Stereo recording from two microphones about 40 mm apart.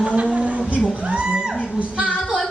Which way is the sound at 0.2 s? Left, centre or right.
Right.